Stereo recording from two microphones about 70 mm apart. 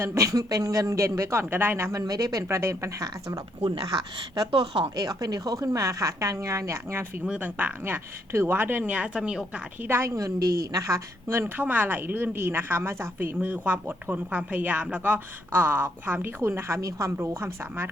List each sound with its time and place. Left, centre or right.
0.0 s a woman's voice: right
1.9 s a woman's voice: right
4.9 s a woman's voice: right
7.3 s speech: right
9.8 s speech: right
10.2 s a woman's voice: right
11.3 s speech: right